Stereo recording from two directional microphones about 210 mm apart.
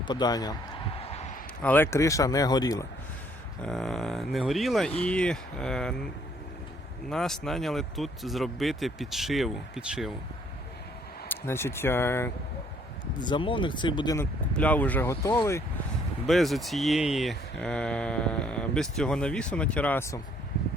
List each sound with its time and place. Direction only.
0.0 s speech: 20° left (ahead or behind)
0.9 s a sound: 30° left (ahead or behind)
1.6 s speech: 10° left (ahead or behind)
3.6 s speech: centre (ahead or behind)
7.1 s speech: centre (ahead or behind)
11.3 s speech: 10° left (ahead or behind)
14.5 s speech: 5° left (ahead or behind)
16.2 s speech: centre (ahead or behind)